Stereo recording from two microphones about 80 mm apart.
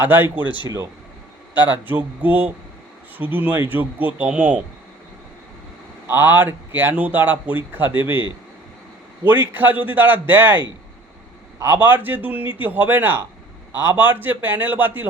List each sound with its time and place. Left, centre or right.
0.0 s speech: right
0.4 s speech: left
1.5 s speech: right
6.1 s speech: right
9.2 s speech: right
11.6 s speech: right